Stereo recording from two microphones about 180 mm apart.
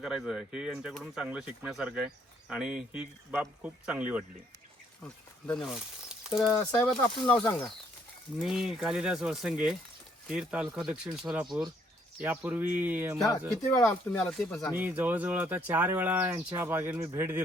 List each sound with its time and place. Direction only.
0.0 s speech: centre (ahead or behind)
5.0 s speech: 5° left (ahead or behind)
6.4 s speech: 15° left (ahead or behind)
8.4 s speech: centre (ahead or behind)
13.7 s speech: 15° left (ahead or behind)
14.2 s speech: 5° left (ahead or behind)
14.8 s speech: 10° right (ahead or behind)